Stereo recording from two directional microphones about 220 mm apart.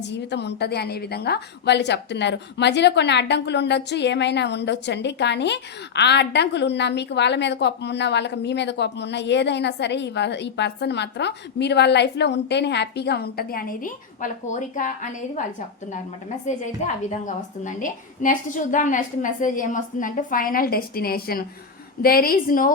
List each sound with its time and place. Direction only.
0.0 s a woman's voice: 50° left (ahead or behind); by 15.4 s 35° left (ahead or behind)
16.5 s a woman's voice: 35° left (ahead or behind)